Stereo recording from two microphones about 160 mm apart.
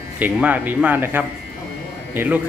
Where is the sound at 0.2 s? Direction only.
10° right (ahead or behind).